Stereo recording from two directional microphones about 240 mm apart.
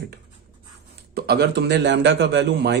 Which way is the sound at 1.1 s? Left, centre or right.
Right.